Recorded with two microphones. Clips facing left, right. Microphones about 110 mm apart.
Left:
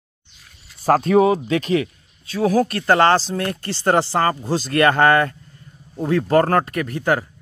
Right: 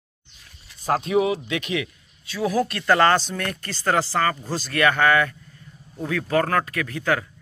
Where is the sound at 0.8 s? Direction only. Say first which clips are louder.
Left 6 dB; 45° left (ahead or behind).